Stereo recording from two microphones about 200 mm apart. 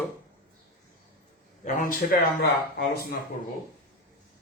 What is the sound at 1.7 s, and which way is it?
Speech, 45° left (ahead or behind).